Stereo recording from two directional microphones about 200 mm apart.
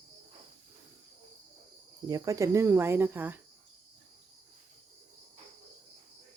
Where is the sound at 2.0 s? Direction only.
15° right (ahead or behind).